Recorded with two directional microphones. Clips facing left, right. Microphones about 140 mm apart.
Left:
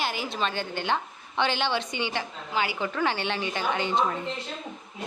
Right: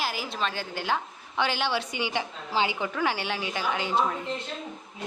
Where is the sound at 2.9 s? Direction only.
10° right (ahead or behind).